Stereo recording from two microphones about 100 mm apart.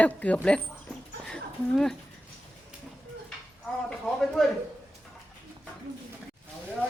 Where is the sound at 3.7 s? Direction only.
5° left (ahead or behind).